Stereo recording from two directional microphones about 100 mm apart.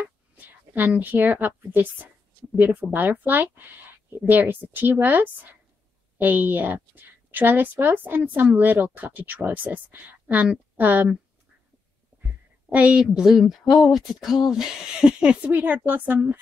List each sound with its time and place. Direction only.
0.0 s a sound: 20° right (ahead or behind)
2.5 s a woman's voice: 15° right (ahead or behind)
12.7 s a woman's voice: 10° right (ahead or behind)